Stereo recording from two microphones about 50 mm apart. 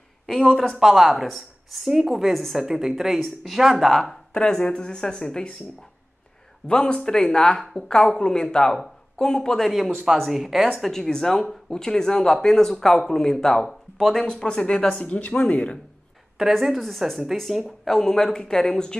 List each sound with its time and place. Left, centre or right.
0.3 s speech: centre
0.7 s a woman's voice: centre
4.1 s speech: centre
6.7 s speech: centre
10.1 s speech: centre
14.4 s speech: left
16.5 s speech: centre
17.8 s speech: centre